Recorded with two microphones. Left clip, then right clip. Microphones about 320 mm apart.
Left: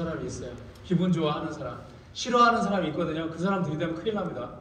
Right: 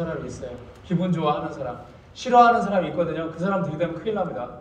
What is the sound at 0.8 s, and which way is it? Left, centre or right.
A man's voice, centre.